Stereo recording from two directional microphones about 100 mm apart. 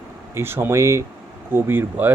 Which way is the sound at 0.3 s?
25° right (ahead or behind).